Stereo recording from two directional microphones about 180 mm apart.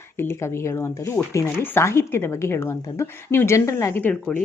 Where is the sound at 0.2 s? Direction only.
15° left (ahead or behind).